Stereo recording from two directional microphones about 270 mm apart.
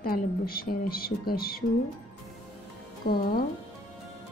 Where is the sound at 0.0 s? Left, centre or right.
Left.